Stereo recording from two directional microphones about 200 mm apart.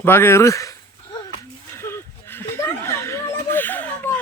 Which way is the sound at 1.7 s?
10° left (ahead or behind).